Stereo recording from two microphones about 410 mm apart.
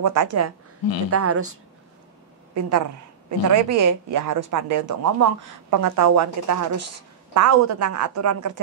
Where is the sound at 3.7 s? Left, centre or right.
Right.